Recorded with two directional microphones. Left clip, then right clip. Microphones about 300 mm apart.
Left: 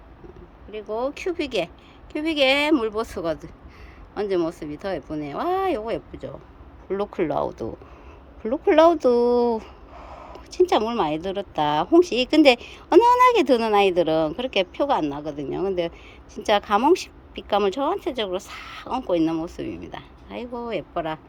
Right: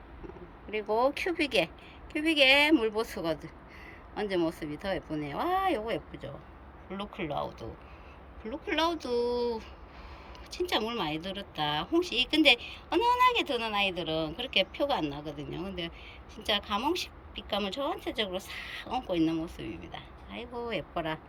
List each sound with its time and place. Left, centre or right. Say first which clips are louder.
0.9 s speech: left 1 dB; centre